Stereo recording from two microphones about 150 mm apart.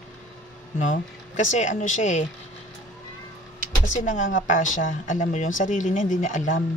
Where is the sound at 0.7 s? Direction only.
55° left (ahead or behind).